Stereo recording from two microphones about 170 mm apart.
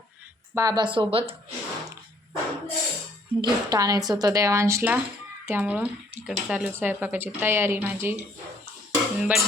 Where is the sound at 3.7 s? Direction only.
20° right (ahead or behind).